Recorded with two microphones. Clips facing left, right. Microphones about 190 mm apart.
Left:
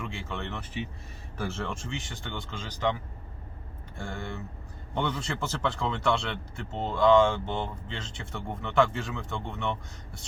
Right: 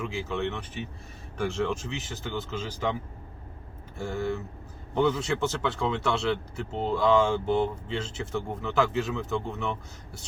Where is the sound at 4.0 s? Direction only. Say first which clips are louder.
Right 7 dB; 5° right (ahead or behind).